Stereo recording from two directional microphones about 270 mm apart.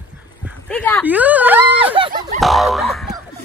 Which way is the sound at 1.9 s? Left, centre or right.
Right.